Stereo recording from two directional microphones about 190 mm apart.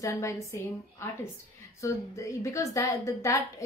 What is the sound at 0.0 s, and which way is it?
Speech, 15° left (ahead or behind).